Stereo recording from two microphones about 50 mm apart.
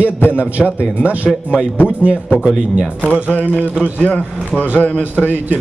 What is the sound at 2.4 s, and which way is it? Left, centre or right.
Speech, centre.